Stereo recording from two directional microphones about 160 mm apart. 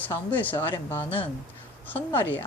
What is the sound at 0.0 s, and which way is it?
Speech, 10° left (ahead or behind).